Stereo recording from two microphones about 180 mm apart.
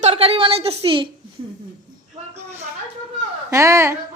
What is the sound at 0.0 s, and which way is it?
Speech, 30° right (ahead or behind).